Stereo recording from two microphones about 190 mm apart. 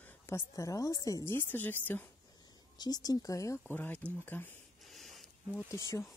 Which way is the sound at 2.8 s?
20° left (ahead or behind).